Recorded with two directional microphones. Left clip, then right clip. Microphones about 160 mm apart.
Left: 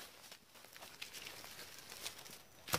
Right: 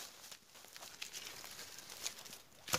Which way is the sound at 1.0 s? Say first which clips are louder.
Right 1 dB; 20° right (ahead or behind).